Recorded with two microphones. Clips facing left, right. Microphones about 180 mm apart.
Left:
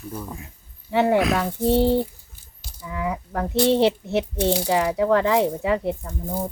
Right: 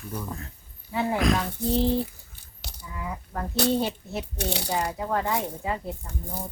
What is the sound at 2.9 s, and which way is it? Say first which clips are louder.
Speech: left 9 dB; 90° left.